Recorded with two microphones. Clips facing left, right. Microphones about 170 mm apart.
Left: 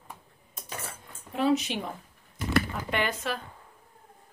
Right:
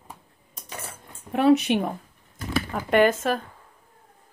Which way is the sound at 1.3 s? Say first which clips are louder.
Right 7 dB; 65° right (ahead or behind).